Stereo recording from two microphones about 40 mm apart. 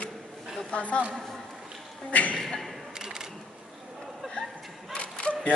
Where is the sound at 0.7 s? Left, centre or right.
Left.